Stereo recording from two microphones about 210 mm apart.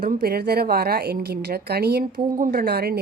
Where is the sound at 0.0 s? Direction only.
45° right (ahead or behind).